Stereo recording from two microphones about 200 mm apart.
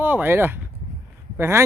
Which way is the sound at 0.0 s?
10° right (ahead or behind).